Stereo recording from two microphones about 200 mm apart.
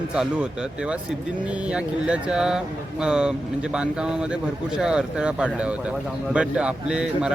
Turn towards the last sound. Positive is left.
turn(degrees=-5)  # may be behind; listen again after turning